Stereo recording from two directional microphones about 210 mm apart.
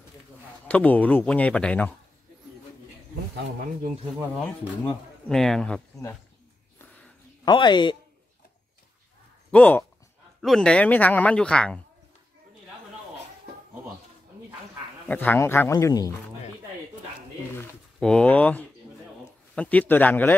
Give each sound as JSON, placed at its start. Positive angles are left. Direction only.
{"t": 0.7, "sound": "speech", "side_deg": 5}
{"t": 5.3, "sound": "speech", "side_deg": 0}
{"t": 7.4, "sound": "speech", "side_deg": 20}
{"t": 9.5, "sound": "speech", "side_deg": 5}
{"t": 15.0, "sound": "speech", "side_deg": 10}
{"t": 17.9, "sound": "speech", "side_deg": 5}